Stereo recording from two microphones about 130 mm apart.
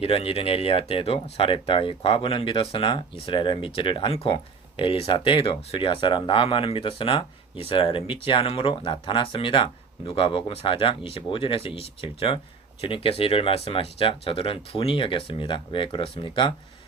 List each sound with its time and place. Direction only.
0.0 s speech: 50° left (ahead or behind)